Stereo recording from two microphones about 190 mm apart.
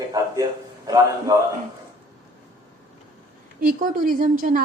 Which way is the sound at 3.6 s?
45° right (ahead or behind).